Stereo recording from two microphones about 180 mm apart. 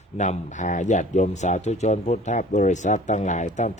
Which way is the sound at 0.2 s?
40° left (ahead or behind).